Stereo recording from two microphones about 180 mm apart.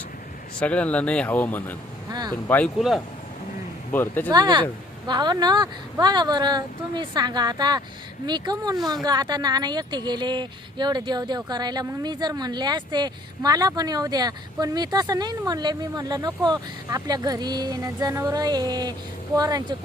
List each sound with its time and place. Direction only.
0.6 s speech: 5° left (ahead or behind)
2.0 s vehicle: 20° right (ahead or behind)
2.3 s speech: 10° left (ahead or behind)
3.9 s speech: 10° left (ahead or behind)
4.3 s speech: 25° right (ahead or behind)